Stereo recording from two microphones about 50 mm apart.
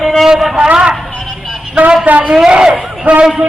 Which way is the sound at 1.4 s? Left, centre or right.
Centre.